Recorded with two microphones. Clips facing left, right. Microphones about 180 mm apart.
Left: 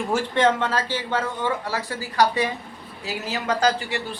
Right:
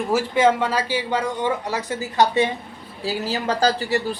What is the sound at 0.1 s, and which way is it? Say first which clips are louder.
Speech: right 3 dB; 5° right (ahead or behind).